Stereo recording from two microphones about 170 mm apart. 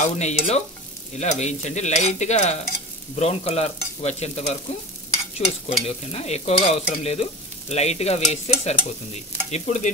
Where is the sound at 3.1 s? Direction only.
35° left (ahead or behind).